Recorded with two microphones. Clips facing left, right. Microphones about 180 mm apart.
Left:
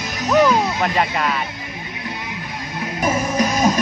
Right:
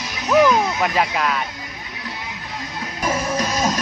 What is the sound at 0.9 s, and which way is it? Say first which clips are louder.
Speech: even; centre (ahead or behind).